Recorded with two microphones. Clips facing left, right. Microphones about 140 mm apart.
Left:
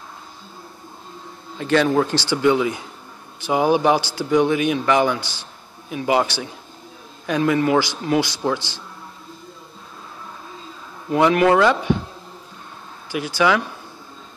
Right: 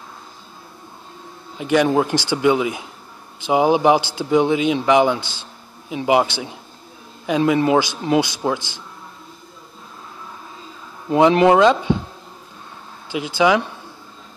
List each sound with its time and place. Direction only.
1.6 s a man's voice: 15° right (ahead or behind)
11.1 s speech: 20° right (ahead or behind)
13.1 s speech: 20° right (ahead or behind)